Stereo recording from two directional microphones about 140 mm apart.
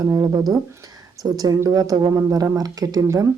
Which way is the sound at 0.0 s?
25° right (ahead or behind).